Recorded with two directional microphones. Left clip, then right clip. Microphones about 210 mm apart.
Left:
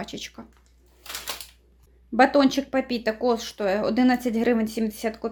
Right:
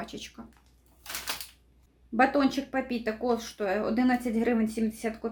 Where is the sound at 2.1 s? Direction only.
35° left (ahead or behind).